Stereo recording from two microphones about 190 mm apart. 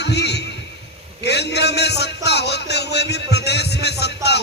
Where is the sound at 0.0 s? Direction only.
60° left (ahead or behind).